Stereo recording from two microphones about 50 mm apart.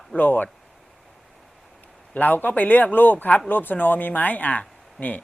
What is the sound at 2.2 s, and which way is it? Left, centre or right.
Speech, left.